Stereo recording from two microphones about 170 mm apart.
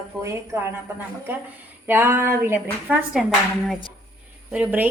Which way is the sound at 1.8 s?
15° right (ahead or behind).